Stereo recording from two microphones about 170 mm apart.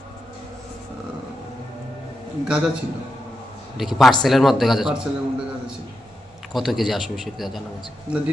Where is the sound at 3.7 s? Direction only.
Centre (ahead or behind).